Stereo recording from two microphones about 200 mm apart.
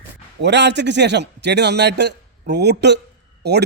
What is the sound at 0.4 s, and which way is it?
A man's voice, 60° right (ahead or behind).